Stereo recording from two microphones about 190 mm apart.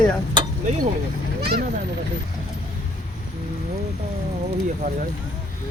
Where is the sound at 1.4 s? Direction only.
55° right (ahead or behind).